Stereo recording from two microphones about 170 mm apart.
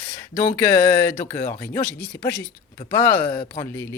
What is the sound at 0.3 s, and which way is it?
Speech, 15° left (ahead or behind).